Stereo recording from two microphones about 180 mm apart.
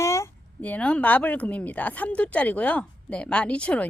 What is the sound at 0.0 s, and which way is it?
A woman's voice, 15° left (ahead or behind).